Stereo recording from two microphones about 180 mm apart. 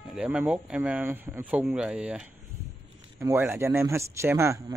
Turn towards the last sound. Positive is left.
turn(degrees=-15)  # may be behind; listen again after turning